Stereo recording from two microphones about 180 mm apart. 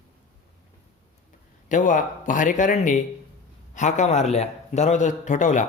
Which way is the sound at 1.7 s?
45° left (ahead or behind).